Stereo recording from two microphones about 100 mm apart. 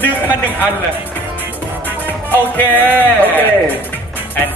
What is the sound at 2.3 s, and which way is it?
Speech, 20° left (ahead or behind).